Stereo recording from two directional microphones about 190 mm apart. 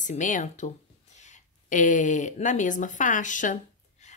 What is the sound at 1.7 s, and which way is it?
Speech, 40° left (ahead or behind).